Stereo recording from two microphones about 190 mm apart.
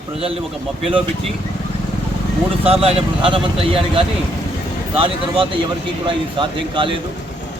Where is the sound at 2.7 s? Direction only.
30° right (ahead or behind).